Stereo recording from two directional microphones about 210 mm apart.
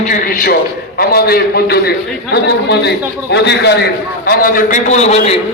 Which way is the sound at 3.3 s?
55° left (ahead or behind).